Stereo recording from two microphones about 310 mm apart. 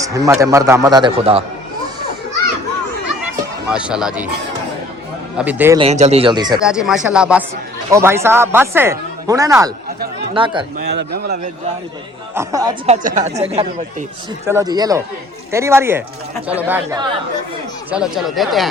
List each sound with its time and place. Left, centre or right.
0.0 s speech: centre
3.7 s speech: centre
5.4 s speech: centre
5.8 s speech: right
6.6 s speech: centre
10.8 s a man's voice: right
12.3 s speech: centre